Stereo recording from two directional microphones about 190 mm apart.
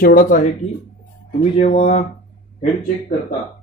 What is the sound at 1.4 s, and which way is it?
Speech, 30° left (ahead or behind).